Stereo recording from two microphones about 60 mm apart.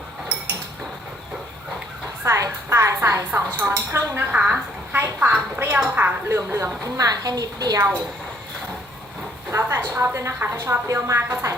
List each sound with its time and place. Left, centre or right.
2.2 s music: right
3.6 s a woman's voice: right
4.2 s a woman's voice: right
6.2 s speech: right
6.8 s a woman's voice: right
9.5 s speech: right